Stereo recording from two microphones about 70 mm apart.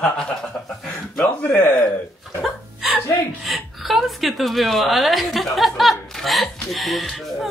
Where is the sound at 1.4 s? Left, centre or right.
Left.